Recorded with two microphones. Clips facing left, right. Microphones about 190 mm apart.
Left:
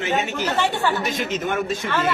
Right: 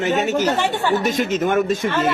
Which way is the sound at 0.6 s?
20° right (ahead or behind).